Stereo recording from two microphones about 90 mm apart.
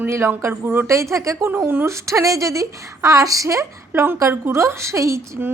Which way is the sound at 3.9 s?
25° right (ahead or behind).